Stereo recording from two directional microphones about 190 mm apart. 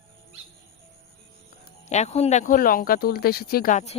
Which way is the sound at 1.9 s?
35° left (ahead or behind).